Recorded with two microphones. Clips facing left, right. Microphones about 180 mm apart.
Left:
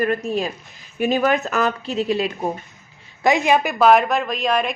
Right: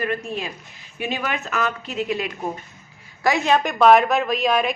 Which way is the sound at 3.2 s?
20° left (ahead or behind).